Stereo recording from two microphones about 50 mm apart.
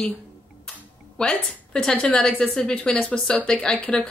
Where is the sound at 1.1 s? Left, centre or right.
Centre.